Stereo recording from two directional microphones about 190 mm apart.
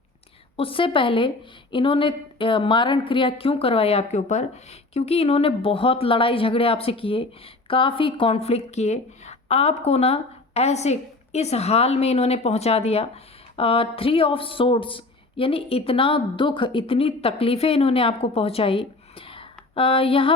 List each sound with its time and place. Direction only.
0.5 s a woman's voice: 30° left (ahead or behind)